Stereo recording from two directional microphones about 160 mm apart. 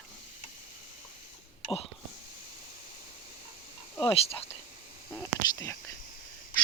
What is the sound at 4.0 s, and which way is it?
Speech, 35° left (ahead or behind).